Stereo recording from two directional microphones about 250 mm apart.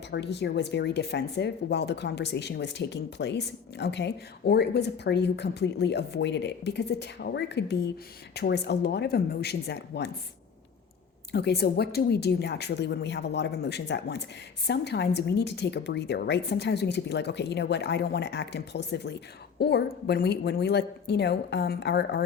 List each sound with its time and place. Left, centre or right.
0.1 s speech: left
11.3 s speech: left